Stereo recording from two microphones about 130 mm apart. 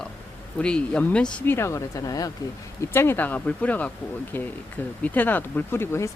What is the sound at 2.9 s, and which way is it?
Speech, 15° left (ahead or behind).